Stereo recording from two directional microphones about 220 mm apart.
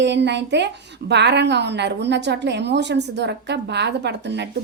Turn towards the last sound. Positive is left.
turn(degrees=-50)  # may be behind; listen again after turning